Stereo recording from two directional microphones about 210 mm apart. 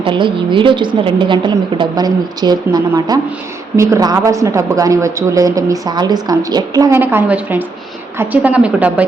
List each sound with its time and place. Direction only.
0.0 s a woman's voice: 25° right (ahead or behind); by 9.0 s 5° right (ahead or behind)